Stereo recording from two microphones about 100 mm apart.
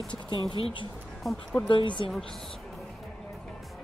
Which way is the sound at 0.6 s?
75° left (ahead or behind).